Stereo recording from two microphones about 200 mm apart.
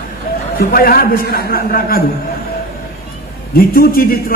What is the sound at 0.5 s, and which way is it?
A man's voice, 50° left (ahead or behind).